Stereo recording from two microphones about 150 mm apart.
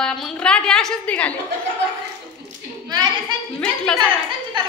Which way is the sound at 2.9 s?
30° right (ahead or behind).